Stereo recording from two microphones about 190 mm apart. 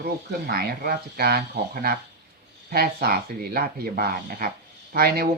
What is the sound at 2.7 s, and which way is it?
Speech, 55° right (ahead or behind).